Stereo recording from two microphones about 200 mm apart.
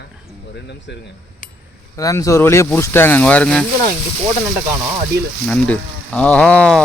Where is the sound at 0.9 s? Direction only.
60° left (ahead or behind).